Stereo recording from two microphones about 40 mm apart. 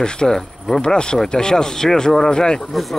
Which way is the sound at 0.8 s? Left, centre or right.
Left.